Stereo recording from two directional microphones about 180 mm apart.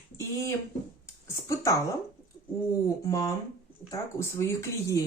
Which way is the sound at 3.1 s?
20° left (ahead or behind).